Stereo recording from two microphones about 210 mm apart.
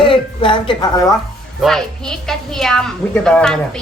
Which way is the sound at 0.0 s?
25° left (ahead or behind).